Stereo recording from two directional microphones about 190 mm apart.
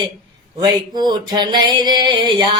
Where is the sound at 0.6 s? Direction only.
20° right (ahead or behind).